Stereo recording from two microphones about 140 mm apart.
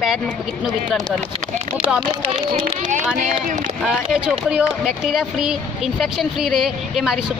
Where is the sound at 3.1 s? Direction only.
70° right (ahead or behind).